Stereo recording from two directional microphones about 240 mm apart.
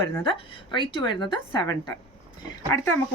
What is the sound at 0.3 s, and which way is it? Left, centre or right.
A woman's voice, centre.